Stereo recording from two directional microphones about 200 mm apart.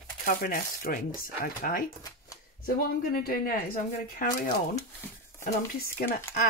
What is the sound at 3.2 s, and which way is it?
Speech, 50° left (ahead or behind).